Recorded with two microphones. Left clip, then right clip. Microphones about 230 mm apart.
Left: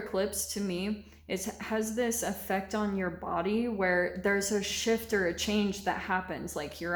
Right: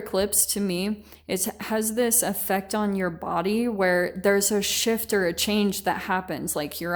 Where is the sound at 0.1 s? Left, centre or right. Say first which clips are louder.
Right 8 dB; right.